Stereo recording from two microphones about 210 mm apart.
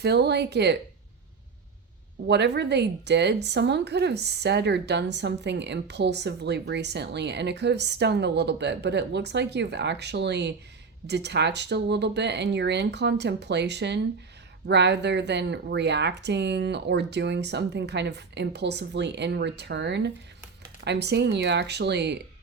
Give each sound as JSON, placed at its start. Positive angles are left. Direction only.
{"t": 0.0, "sound": "speech", "side_deg": -50}
{"t": 2.2, "sound": "speech", "side_deg": -55}